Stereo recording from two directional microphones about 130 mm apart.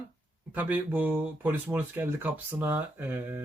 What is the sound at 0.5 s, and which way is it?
Speech, 15° right (ahead or behind).